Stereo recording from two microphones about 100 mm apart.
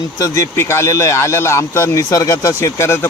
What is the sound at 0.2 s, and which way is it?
Speech, 30° left (ahead or behind).